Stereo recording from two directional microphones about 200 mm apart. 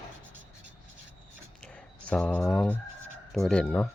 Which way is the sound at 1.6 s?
5° left (ahead or behind).